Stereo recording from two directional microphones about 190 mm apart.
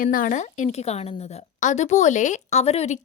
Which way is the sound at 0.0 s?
45° left (ahead or behind).